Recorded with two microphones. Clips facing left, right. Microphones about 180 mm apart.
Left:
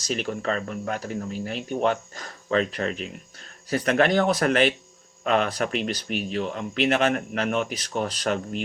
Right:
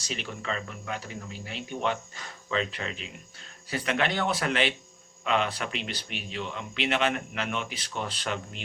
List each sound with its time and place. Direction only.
0.0 s speech: 45° left (ahead or behind)